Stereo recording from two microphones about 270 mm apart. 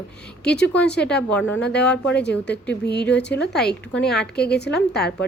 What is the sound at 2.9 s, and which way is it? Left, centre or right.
A woman's voice, centre.